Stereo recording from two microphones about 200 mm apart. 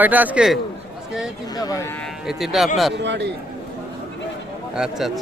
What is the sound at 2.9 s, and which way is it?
Speech, 60° right (ahead or behind).